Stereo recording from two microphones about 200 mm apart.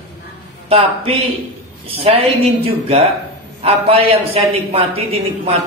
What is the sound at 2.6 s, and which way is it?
A man's voice, 30° right (ahead or behind).